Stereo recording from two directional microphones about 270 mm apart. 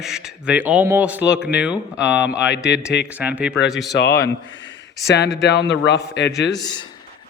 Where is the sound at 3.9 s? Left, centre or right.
Left.